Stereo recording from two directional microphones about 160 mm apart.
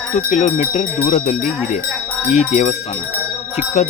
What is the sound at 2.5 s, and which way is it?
Speech, 45° left (ahead or behind).